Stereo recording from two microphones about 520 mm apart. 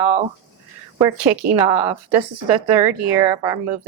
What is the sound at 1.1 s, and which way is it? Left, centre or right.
Speech, right.